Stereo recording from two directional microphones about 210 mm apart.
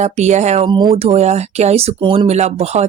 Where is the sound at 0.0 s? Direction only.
35° right (ahead or behind).